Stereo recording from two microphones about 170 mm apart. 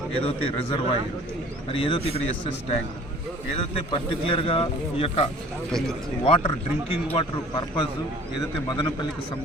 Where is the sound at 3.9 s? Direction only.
30° left (ahead or behind).